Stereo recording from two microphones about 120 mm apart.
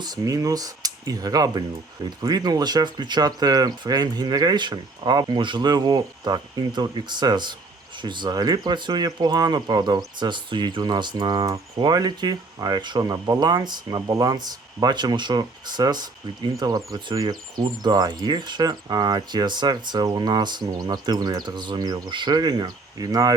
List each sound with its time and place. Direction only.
0.0 s speech: 30° right (ahead or behind)